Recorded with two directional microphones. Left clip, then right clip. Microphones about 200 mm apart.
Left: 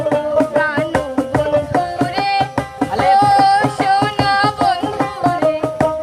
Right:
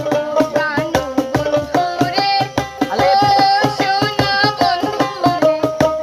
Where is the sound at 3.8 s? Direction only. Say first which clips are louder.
Left 1 dB; 5° right (ahead or behind).